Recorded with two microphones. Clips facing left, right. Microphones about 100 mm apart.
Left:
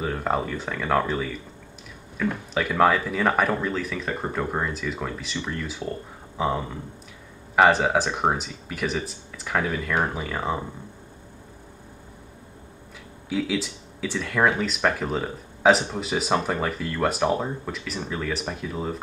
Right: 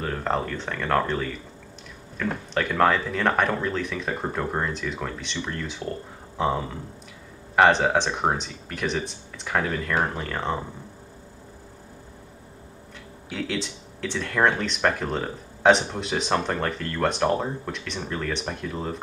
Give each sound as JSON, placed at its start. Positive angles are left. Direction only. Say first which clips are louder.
{"t": 0.0, "sound": "speech", "louder": "left 1 dB", "side_deg": 10}
{"t": 13.3, "sound": "speech", "louder": "left 4 dB", "side_deg": 5}